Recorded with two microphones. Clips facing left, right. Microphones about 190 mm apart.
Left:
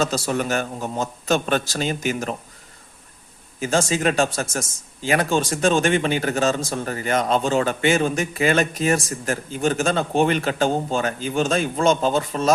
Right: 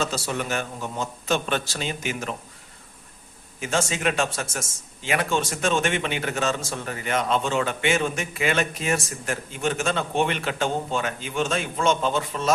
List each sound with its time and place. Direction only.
0.0 s a man's voice: 40° left (ahead or behind)
3.6 s a man's voice: 35° left (ahead or behind)